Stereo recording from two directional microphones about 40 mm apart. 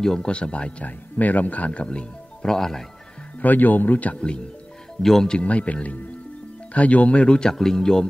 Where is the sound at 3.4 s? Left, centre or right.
Left.